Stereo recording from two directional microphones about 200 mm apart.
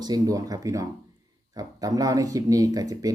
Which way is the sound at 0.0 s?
20° right (ahead or behind).